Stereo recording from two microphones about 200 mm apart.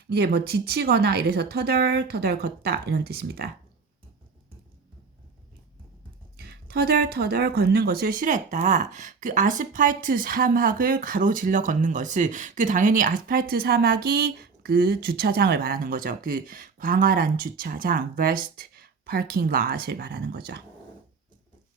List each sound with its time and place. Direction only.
0.1 s speech: 55° right (ahead or behind)
6.3 s speech: 50° right (ahead or behind)